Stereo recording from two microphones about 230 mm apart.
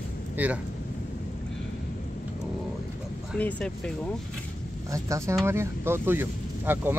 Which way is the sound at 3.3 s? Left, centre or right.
Centre.